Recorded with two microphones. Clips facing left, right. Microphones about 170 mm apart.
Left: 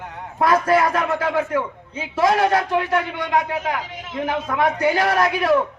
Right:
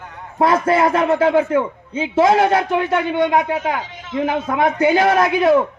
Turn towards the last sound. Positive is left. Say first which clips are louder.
# right 4 dB
turn(degrees=-25)  # may be behind; listen again after turning